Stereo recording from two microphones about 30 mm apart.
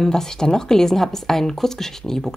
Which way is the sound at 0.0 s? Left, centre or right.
Centre.